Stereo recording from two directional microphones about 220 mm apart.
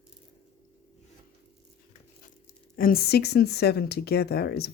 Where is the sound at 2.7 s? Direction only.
40° left (ahead or behind).